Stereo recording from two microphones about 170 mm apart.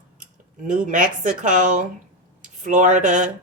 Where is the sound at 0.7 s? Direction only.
50° right (ahead or behind).